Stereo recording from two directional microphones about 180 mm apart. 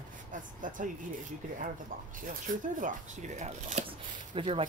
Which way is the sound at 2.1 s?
50° right (ahead or behind).